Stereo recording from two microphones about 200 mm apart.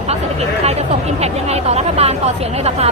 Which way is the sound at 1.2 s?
30° right (ahead or behind).